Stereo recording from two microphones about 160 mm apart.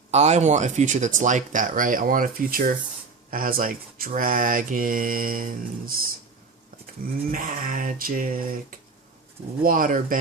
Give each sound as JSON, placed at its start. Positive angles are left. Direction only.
{"t": 0.1, "sound": "speech", "side_deg": -45}
{"t": 7.3, "sound": "speech", "side_deg": -55}
{"t": 9.6, "sound": "speech", "side_deg": -60}